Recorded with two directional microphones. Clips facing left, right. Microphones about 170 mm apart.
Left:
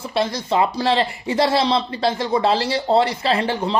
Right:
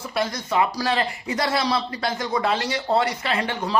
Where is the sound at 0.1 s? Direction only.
30° left (ahead or behind).